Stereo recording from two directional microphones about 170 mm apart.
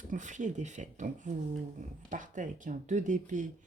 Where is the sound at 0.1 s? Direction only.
45° right (ahead or behind).